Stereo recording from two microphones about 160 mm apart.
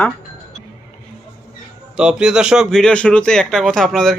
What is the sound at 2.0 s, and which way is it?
Speech, 5° right (ahead or behind).